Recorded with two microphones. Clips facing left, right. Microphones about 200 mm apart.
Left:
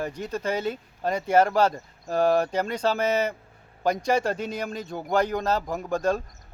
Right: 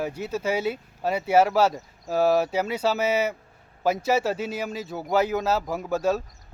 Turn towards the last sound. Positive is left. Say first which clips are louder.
# right 1 dB
turn(degrees=-5)  # may be behind; listen again after turning